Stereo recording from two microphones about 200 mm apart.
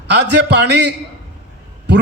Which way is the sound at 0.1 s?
60° right (ahead or behind).